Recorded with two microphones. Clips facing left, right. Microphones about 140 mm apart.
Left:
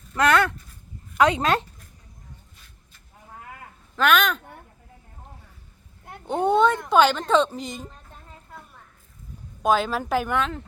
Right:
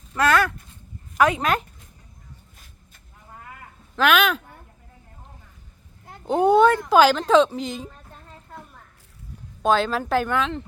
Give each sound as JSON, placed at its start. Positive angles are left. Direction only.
{"t": 0.2, "sound": "speech", "side_deg": 20}
{"t": 3.9, "sound": "speech", "side_deg": -5}
{"t": 6.2, "sound": "speech", "side_deg": -5}
{"t": 9.6, "sound": "speech", "side_deg": 5}